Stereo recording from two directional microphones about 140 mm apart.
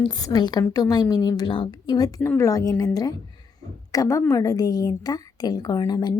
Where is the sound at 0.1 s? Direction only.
25° left (ahead or behind).